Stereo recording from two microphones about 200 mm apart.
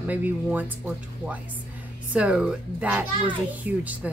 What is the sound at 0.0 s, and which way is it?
A child's voice, 10° right (ahead or behind).